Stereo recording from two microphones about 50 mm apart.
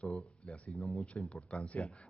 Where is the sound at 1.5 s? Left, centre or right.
Centre.